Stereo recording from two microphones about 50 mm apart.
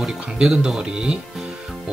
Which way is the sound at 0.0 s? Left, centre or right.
Centre.